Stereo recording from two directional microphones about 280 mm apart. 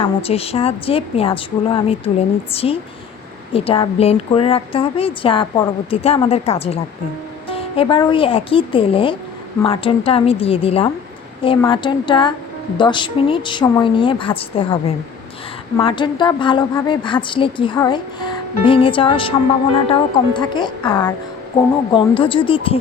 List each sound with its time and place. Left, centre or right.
0.0 s a woman's voice: left